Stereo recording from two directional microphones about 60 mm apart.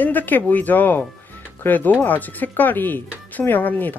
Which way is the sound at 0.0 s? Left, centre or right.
Left.